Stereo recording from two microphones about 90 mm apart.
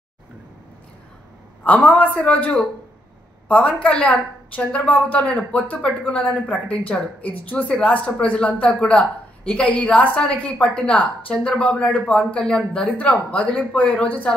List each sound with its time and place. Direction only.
1.6 s a woman's voice: 20° left (ahead or behind)